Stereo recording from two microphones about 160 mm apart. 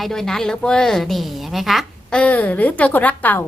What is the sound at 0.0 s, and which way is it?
A woman's voice, 5° left (ahead or behind).